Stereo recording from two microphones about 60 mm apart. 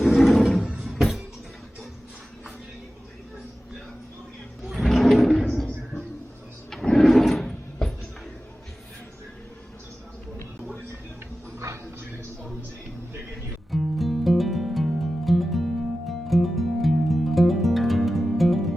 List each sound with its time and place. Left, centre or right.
0.0 s a sound: centre
0.9 s music: centre
4.7 s drawer open or close: centre
6.7 s drawer open or close: centre
13.7 s music: centre